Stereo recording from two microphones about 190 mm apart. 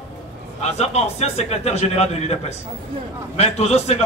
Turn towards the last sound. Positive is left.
turn(degrees=35)  # may be behind; listen again after turning